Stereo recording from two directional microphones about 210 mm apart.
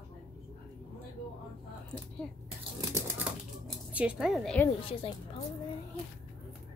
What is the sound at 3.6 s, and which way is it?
Speech, 5° right (ahead or behind).